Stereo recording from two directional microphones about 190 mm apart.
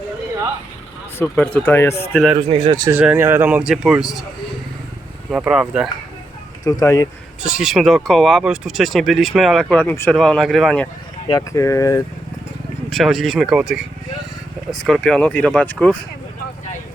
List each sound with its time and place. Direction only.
1.2 s speech: 10° left (ahead or behind)
2.3 s speech: 25° right (ahead or behind)
2.9 s speech: 5° right (ahead or behind)
5.3 s speech: 5° right (ahead or behind)
6.7 s speech: 15° left (ahead or behind)
7.4 s speech: 5° right (ahead or behind)
11.3 s speech: 15° left (ahead or behind)
12.9 s speech: centre (ahead or behind)